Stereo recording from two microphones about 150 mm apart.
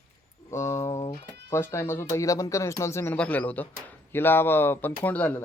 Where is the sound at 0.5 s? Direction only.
20° left (ahead or behind).